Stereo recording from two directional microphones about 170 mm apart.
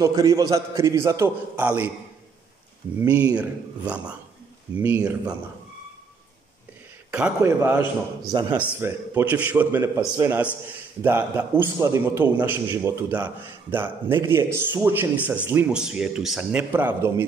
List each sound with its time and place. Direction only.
0.0 s a man's voice: 20° right (ahead or behind)
3.0 s a man's voice: 10° right (ahead or behind)
7.1 s a man's voice: 10° right (ahead or behind)
8.3 s a man's voice: 25° right (ahead or behind)